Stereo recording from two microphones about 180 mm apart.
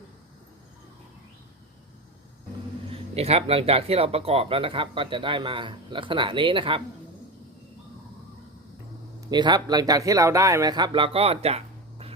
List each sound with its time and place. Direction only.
2.9 s speech: 35° right (ahead or behind)
9.3 s speech: 25° right (ahead or behind)